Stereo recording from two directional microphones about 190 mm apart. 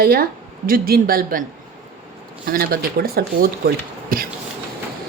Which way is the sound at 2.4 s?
50° right (ahead or behind).